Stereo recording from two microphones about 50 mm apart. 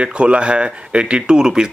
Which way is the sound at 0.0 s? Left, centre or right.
Right.